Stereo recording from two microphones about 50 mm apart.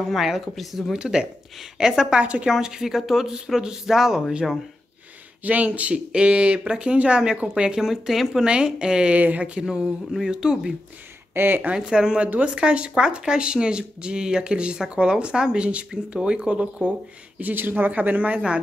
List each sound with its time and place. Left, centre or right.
0.0 s speech: centre
0.9 s speech: centre
2.5 s speech: centre
5.4 s speech: right
7.8 s speech: centre
8.5 s speech: centre
9.1 s speech: right
10.3 s speech: centre
11.3 s speech: right
11.6 s speech: centre
17.4 s speech: right